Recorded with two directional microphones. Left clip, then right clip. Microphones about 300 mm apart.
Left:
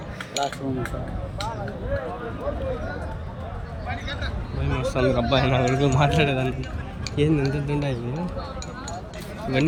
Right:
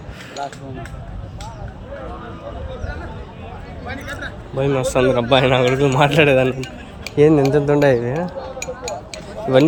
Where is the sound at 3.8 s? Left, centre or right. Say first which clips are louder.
Right 3 dB; centre.